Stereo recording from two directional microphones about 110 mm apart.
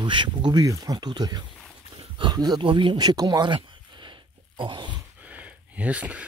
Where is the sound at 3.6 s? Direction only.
45° right (ahead or behind).